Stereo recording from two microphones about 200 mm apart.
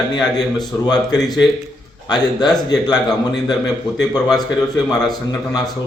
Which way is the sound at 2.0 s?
20° left (ahead or behind).